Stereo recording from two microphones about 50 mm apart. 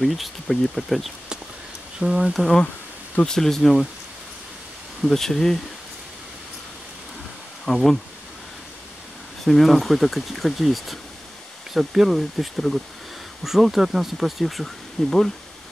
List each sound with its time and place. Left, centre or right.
0.0 s speech: centre
2.0 s speech: right
3.3 s speech: centre
5.0 s speech: centre
7.6 s speech: centre
9.4 s speech: centre